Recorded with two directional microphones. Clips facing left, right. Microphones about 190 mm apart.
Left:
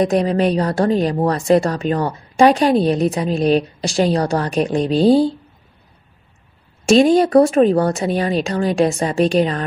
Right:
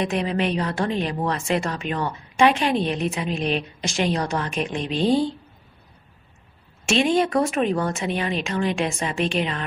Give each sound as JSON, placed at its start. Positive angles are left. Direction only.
{"t": 0.0, "sound": "a woman's voice", "side_deg": 40}
{"t": 6.9, "sound": "a woman's voice", "side_deg": 35}